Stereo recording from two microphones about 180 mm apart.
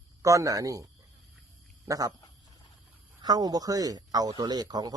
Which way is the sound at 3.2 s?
20° right (ahead or behind).